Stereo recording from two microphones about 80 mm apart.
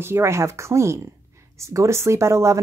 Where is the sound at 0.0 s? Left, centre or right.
Right.